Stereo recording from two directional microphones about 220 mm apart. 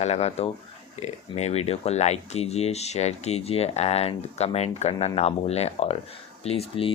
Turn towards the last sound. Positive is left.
turn(degrees=25)  # may be behind; listen again after turning